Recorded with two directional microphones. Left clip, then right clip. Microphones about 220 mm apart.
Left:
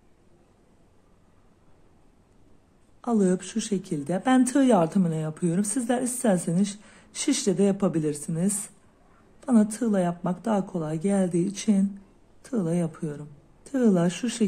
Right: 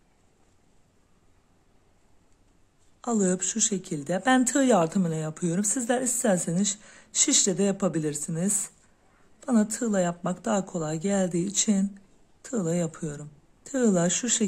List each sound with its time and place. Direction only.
3.0 s a woman's voice: 20° right (ahead or behind)